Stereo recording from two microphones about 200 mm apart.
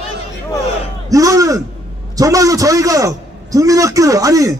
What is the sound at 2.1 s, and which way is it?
A man's voice, 15° right (ahead or behind).